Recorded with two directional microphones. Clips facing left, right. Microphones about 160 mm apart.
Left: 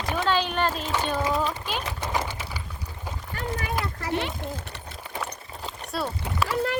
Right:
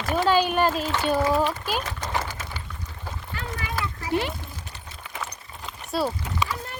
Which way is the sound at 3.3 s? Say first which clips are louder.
Left 3 dB; 40° left (ahead or behind).